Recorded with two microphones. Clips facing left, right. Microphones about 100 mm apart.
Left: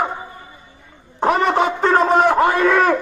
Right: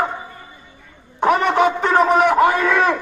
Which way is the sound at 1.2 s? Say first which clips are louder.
Right 1 dB; 30° left (ahead or behind).